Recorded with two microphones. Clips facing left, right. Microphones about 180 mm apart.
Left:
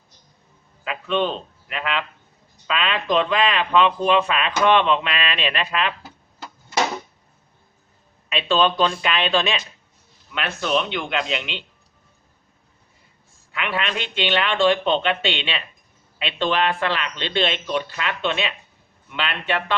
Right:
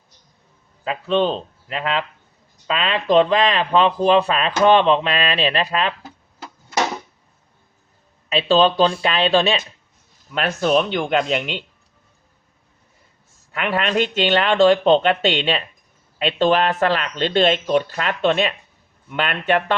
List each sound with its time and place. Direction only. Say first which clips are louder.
0.9 s speech: right 4 dB; 35° right (ahead or behind)
8.3 s speech: right 4 dB; 35° right (ahead or behind)
13.5 s speech: right 5 dB; 45° right (ahead or behind)